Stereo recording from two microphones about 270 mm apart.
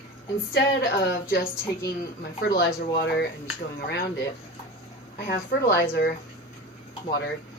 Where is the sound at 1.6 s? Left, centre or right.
Centre.